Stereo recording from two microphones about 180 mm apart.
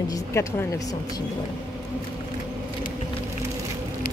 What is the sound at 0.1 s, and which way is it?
Speech, 15° left (ahead or behind).